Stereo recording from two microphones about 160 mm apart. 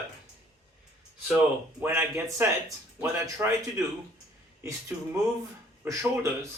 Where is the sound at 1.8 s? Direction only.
15° right (ahead or behind).